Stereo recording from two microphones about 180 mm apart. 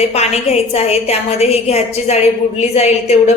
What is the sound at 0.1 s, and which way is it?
A woman's voice, 35° left (ahead or behind).